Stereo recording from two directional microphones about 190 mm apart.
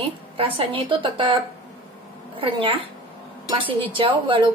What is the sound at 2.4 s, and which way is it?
Speech, 25° right (ahead or behind).